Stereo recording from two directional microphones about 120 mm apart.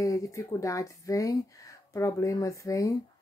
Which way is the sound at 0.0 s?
25° left (ahead or behind).